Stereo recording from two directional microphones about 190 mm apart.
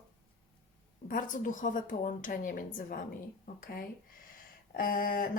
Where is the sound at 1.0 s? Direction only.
45° left (ahead or behind).